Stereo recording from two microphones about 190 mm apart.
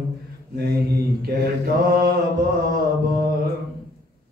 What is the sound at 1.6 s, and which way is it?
Mantra, 50° right (ahead or behind).